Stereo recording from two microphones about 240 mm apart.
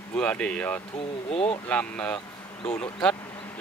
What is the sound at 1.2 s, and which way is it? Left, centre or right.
Speech, left.